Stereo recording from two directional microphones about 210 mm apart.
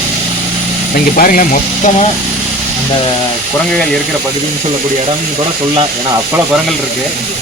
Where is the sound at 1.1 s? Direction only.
40° left (ahead or behind).